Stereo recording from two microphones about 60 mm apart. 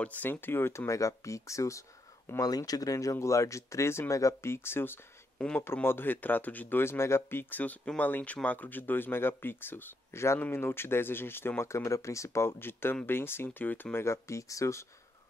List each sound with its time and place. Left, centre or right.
0.0 s speech: left
2.4 s speech: left
6.8 s speech: left
10.1 s speech: left
13.9 s speech: left